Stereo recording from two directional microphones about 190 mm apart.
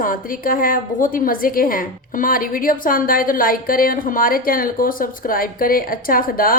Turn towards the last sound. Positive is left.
turn(degrees=50)  # may be behind; listen again after turning